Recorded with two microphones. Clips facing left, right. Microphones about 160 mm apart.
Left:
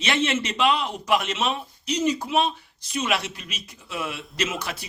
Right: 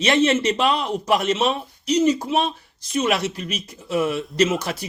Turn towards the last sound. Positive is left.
turn(degrees=-40)  # may be behind; listen again after turning